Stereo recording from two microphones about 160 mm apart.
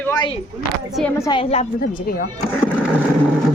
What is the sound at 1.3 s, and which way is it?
Speech, 40° left (ahead or behind).